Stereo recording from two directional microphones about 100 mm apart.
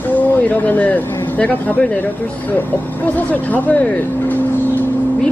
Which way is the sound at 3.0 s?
15° left (ahead or behind).